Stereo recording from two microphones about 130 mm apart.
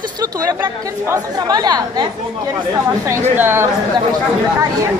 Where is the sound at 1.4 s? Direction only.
30° right (ahead or behind).